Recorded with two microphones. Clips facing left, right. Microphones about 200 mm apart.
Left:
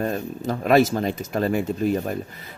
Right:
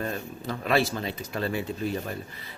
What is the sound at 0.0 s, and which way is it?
Speech, 45° left (ahead or behind).